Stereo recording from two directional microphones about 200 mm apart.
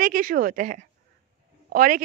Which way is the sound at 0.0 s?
45° right (ahead or behind).